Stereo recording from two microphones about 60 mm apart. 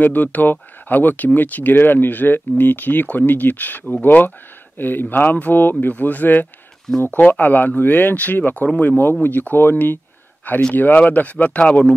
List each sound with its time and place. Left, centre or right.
0.0 s speech: left